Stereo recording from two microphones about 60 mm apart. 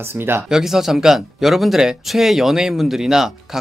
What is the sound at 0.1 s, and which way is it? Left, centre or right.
Speech, right.